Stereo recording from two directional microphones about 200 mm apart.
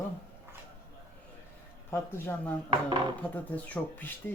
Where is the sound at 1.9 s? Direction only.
10° left (ahead or behind).